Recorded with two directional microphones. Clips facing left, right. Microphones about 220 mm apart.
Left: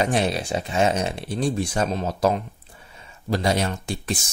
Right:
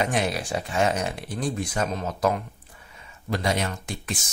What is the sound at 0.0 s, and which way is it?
Speech, 30° left (ahead or behind).